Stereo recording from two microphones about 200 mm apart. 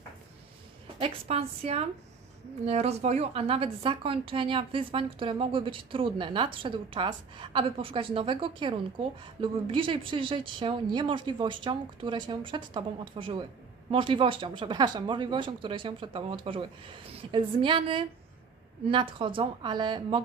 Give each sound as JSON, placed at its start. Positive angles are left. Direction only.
{"t": 0.9, "sound": "a woman's voice", "side_deg": -30}